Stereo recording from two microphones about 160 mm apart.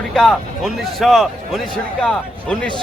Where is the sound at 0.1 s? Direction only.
Centre (ahead or behind).